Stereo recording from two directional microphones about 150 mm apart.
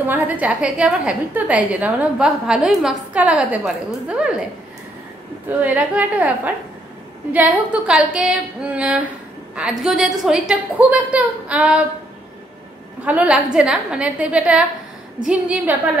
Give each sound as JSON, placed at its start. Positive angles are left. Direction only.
{"t": 0.0, "sound": "a woman's voice", "side_deg": -10}
{"t": 5.6, "sound": "a woman's voice", "side_deg": -10}
{"t": 13.0, "sound": "a woman's voice", "side_deg": -10}